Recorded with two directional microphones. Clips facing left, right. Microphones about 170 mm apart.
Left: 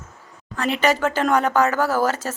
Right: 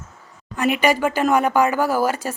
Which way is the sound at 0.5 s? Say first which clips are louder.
Right 2 dB; 15° right (ahead or behind).